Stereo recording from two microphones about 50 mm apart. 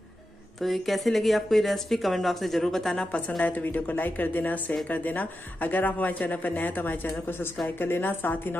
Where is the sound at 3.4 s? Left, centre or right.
Left.